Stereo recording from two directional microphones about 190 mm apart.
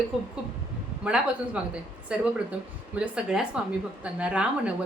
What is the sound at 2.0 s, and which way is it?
A woman's voice, 5° right (ahead or behind).